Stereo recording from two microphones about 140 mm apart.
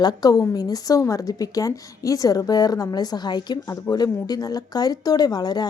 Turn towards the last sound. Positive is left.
turn(degrees=30)  # may be behind; listen again after turning